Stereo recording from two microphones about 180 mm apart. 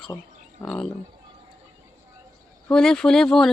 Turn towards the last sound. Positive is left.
turn(degrees=0)  # may be behind; listen again after turning